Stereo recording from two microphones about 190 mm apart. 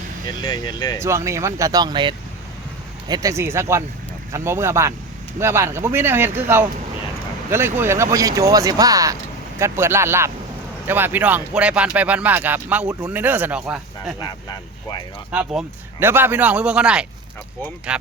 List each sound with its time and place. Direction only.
0.3 s speech: 20° left (ahead or behind)
1.0 s speech: 15° right (ahead or behind)
14.2 s speech: 20° left (ahead or behind)
15.3 s speech: 5° right (ahead or behind)